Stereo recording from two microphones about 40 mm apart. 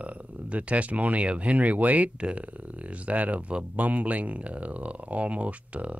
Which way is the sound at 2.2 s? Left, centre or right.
Right.